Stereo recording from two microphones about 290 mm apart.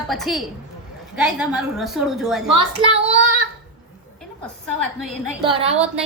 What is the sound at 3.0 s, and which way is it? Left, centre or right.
Child singing, right.